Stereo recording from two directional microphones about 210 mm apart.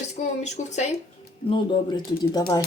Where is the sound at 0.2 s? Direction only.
35° left (ahead or behind).